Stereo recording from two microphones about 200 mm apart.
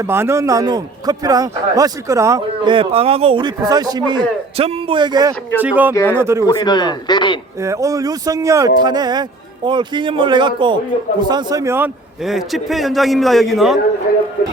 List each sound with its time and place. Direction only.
0.0 s a man's voice: 15° right (ahead or behind)
5.5 s speech: 10° right (ahead or behind)
5.9 s speech: 10° left (ahead or behind)
6.1 s speech: 15° right (ahead or behind)
6.4 s a man's voice: 20° left (ahead or behind)
7.6 s a man's voice: 15° right (ahead or behind)
12.2 s a man's voice: centre (ahead or behind)